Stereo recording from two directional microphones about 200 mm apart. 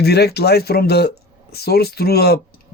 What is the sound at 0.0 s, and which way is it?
Speech, 55° left (ahead or behind).